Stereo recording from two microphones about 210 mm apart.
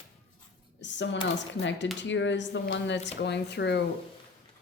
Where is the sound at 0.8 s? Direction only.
60° left (ahead or behind).